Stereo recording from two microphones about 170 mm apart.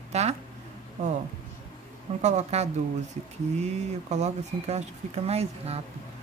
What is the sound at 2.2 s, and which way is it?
Speech, 40° right (ahead or behind).